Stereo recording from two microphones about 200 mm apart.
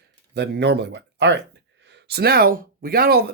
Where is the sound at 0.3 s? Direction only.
55° right (ahead or behind).